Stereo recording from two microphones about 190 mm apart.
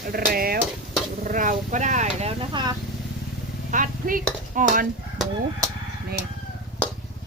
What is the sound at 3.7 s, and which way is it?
Speech, 45° right (ahead or behind).